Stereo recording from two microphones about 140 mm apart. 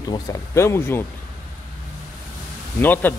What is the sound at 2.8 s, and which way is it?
Speech, 15° left (ahead or behind).